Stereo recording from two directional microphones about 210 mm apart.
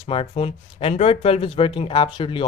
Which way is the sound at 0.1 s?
25° left (ahead or behind).